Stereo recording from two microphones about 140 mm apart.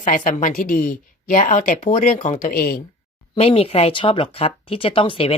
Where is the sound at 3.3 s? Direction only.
45° left (ahead or behind).